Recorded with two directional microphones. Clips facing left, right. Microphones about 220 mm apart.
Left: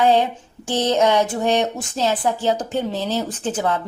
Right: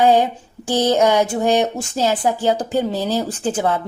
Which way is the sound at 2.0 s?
15° right (ahead or behind).